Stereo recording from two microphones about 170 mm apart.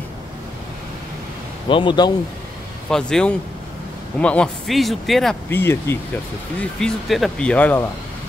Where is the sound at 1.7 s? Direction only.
30° left (ahead or behind).